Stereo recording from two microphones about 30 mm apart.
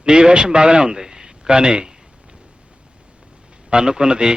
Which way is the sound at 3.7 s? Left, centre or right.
Right.